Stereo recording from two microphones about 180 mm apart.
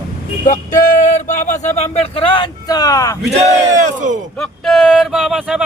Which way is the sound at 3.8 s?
45° right (ahead or behind).